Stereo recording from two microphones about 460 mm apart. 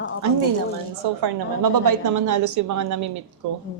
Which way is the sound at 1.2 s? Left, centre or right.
Right.